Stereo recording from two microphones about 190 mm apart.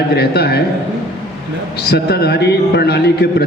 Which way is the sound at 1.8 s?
55° left (ahead or behind).